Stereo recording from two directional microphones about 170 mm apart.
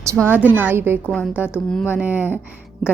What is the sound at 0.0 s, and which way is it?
A woman's voice, 15° right (ahead or behind).